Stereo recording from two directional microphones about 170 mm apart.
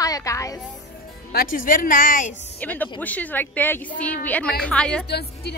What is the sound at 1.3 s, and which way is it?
Speech, 55° left (ahead or behind).